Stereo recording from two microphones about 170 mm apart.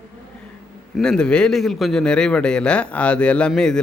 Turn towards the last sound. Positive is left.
turn(degrees=5)  # may be behind; listen again after turning